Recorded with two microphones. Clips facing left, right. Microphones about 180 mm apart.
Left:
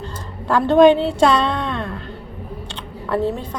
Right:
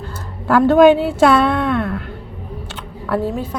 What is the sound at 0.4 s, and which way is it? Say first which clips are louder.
A woman's voice: right 2 dB; 5° right (ahead or behind).